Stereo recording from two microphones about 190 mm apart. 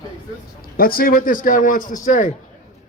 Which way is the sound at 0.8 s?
50° left (ahead or behind).